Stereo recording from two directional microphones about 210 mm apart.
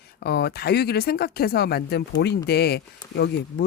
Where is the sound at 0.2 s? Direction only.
50° left (ahead or behind).